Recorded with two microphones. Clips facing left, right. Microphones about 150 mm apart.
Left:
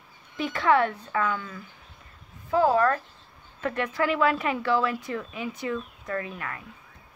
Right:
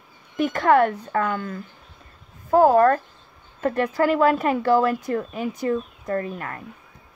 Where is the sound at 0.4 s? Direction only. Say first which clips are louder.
Right 5 dB; 50° right (ahead or behind).